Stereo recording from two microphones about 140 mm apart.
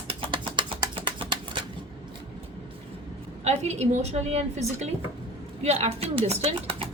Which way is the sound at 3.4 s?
50° right (ahead or behind).